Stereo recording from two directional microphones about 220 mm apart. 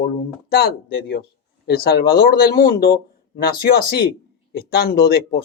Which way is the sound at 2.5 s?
20° left (ahead or behind).